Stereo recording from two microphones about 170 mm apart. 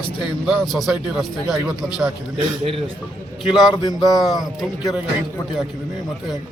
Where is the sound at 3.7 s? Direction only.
25° left (ahead or behind).